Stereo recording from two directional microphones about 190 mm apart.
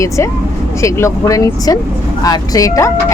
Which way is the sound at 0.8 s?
15° left (ahead or behind).